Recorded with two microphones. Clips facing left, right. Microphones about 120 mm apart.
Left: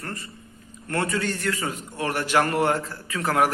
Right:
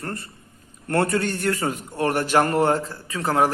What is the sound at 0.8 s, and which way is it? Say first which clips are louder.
A man's voice: right 4 dB; 45° right (ahead or behind).